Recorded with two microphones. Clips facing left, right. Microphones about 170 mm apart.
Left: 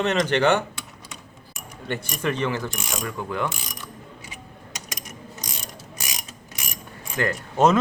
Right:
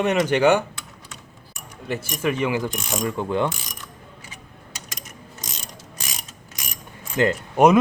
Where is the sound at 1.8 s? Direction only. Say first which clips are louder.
Right 2 dB; 5° right (ahead or behind).